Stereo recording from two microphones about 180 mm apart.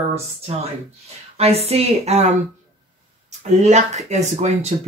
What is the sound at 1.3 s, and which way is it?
Speech, 35° right (ahead or behind).